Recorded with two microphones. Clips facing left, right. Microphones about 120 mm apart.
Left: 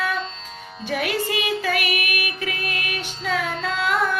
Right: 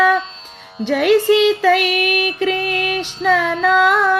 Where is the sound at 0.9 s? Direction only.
70° right (ahead or behind).